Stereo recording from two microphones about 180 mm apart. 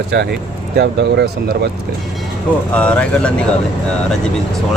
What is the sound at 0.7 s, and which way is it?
Speech, 70° right (ahead or behind).